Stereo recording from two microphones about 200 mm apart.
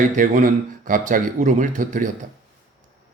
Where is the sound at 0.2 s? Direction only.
40° right (ahead or behind).